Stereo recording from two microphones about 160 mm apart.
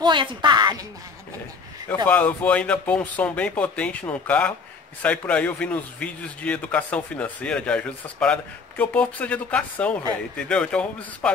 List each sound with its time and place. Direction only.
0.0 s speech: 30° right (ahead or behind)
2.0 s a man's voice: 10° left (ahead or behind)